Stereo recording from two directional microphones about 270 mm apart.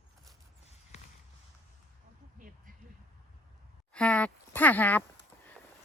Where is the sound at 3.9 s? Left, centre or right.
Centre.